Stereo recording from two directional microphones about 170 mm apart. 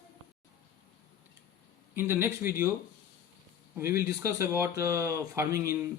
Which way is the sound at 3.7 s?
15° right (ahead or behind).